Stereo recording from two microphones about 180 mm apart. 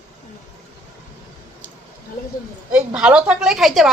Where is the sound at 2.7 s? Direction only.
5° right (ahead or behind).